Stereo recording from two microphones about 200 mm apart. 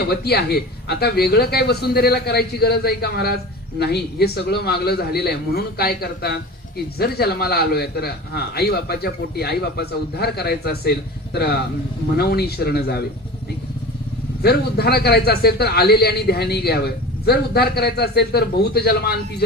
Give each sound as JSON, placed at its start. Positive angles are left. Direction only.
{"t": 0.1, "sound": "a man's voice", "side_deg": 50}
{"t": 14.4, "sound": "a man's voice", "side_deg": 55}